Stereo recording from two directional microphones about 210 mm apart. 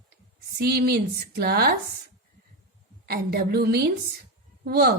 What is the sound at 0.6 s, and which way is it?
A woman's voice, 45° right (ahead or behind).